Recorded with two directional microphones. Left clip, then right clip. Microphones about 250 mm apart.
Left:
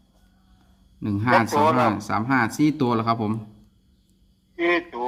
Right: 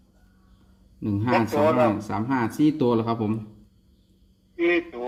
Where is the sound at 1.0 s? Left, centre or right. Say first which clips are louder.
Left 4 dB; left.